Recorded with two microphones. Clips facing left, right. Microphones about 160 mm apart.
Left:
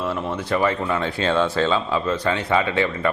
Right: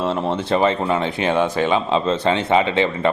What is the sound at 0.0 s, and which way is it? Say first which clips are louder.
Speech: right 4 dB; 25° right (ahead or behind).